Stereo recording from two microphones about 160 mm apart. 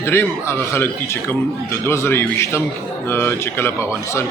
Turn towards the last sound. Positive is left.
turn(degrees=15)  # may be behind; listen again after turning